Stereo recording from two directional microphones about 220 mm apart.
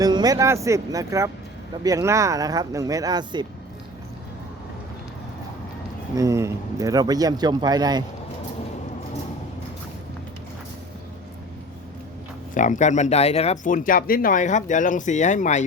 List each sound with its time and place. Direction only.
0.0 s speech: 15° right (ahead or behind)
6.1 s speech: 15° right (ahead or behind)
12.5 s speech: 35° left (ahead or behind)